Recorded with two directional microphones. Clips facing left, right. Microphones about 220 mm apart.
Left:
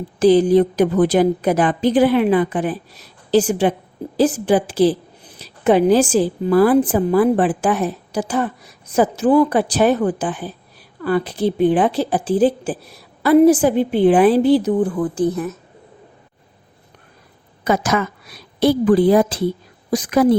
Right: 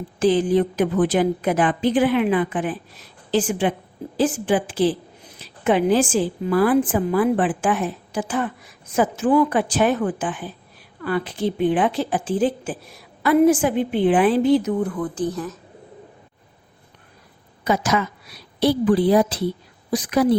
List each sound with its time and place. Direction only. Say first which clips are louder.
0.2 s a woman's voice: left 5 dB; 40° left (ahead or behind)
17.6 s a woman's voice: left 3 dB; 50° left (ahead or behind)